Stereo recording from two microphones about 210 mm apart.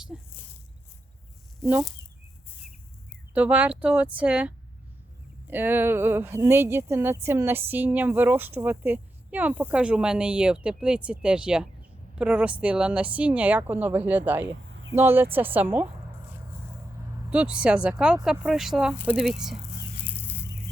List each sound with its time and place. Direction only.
0.1 s speech: centre (ahead or behind)
3.3 s speech: 5° right (ahead or behind)
14.7 s a sound: 65° right (ahead or behind)
14.9 s speech: 10° right (ahead or behind)
17.3 s speech: 5° right (ahead or behind)
20.1 s a sound: 10° left (ahead or behind)